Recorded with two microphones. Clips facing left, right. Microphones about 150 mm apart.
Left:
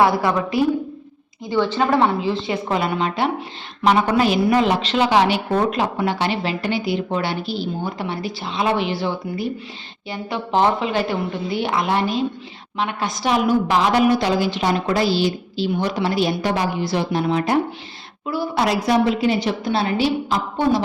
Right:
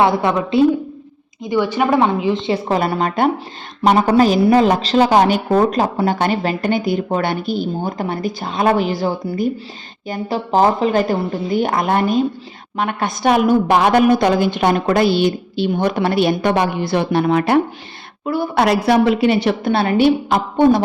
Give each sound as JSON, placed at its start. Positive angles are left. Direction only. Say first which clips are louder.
{"t": 0.2, "sound": "a woman's voice", "louder": "right 5 dB", "side_deg": -25}
{"t": 1.5, "sound": "a woman's voice", "louder": "right 2 dB", "side_deg": -10}
{"t": 2.5, "sound": "a woman's voice", "louder": "right 4 dB", "side_deg": -35}